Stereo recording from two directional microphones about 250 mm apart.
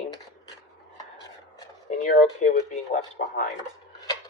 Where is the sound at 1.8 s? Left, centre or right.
Left.